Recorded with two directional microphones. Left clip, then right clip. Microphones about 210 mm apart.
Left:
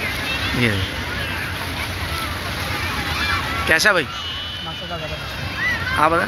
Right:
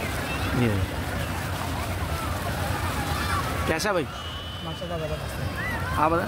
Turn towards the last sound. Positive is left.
turn(degrees=5)  # may be behind; listen again after turning